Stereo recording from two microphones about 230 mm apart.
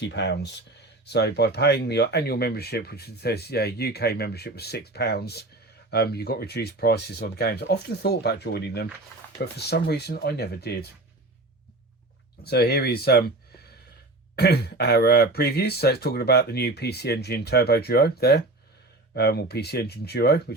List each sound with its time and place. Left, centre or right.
0.0 s speech: left
12.4 s speech: left